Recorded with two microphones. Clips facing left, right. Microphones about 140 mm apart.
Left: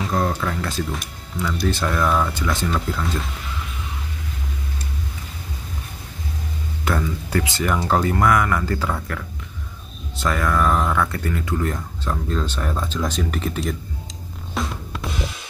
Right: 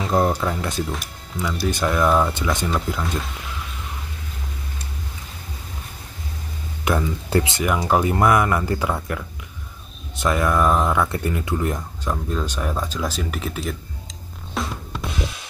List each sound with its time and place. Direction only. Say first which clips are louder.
0.1 s speech: right 5 dB; 20° right (ahead or behind)
6.8 s music: right 2 dB; 20° right (ahead or behind)
7.2 s speech: right 2 dB; 25° right (ahead or behind)
7.6 s speech: left 2 dB; 10° right (ahead or behind)
14.5 s music: even; centre (ahead or behind)